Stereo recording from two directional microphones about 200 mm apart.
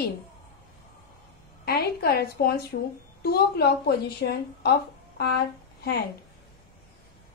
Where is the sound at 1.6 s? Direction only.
50° left (ahead or behind).